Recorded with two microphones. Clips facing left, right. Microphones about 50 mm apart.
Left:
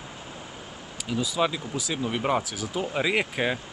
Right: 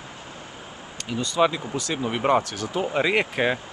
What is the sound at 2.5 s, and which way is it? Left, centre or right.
Speech, centre.